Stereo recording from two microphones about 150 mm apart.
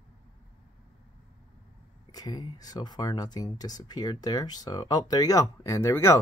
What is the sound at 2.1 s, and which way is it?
Speech, 25° left (ahead or behind).